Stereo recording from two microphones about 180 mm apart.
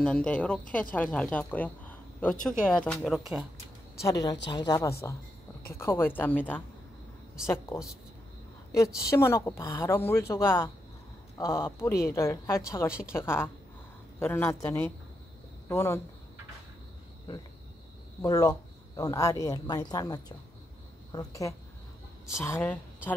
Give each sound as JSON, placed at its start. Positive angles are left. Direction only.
{"t": 0.0, "sound": "a woman's voice", "side_deg": 5}
{"t": 1.4, "sound": "a sound", "side_deg": 10}
{"t": 2.4, "sound": "speech", "side_deg": 5}
{"t": 4.0, "sound": "a woman's voice", "side_deg": 20}
{"t": 9.1, "sound": "a woman's voice", "side_deg": 15}
{"t": 18.2, "sound": "a woman's voice", "side_deg": 20}